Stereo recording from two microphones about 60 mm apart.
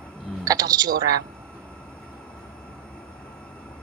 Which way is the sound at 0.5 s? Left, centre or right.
Right.